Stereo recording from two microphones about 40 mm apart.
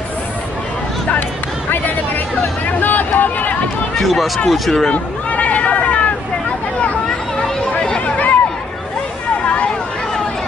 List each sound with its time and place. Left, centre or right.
1.7 s hubbub: left
4.0 s speech: centre
4.9 s a sound: left